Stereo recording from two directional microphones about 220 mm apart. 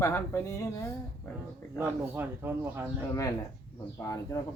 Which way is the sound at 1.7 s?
10° right (ahead or behind).